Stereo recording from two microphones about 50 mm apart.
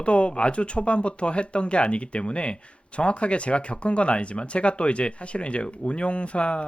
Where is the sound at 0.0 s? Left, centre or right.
Left.